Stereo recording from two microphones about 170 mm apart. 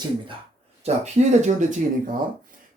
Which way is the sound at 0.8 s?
40° right (ahead or behind).